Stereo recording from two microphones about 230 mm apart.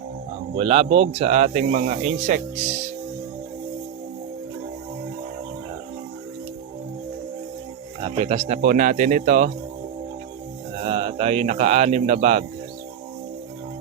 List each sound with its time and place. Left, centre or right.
0.5 s speech: right
8.0 s speech: right
10.8 s speech: right